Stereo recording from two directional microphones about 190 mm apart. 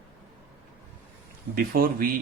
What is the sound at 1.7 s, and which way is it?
Speech, 50° right (ahead or behind).